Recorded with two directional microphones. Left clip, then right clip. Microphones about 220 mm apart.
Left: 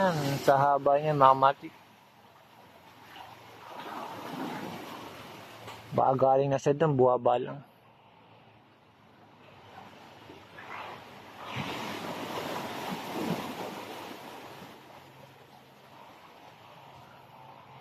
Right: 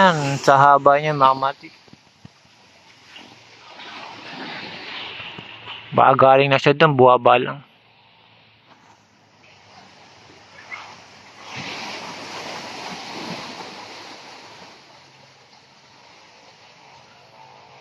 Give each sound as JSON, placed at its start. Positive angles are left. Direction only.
{"t": 0.0, "sound": "speech", "side_deg": -20}
{"t": 1.2, "sound": "speech", "side_deg": -5}
{"t": 5.9, "sound": "speech", "side_deg": -25}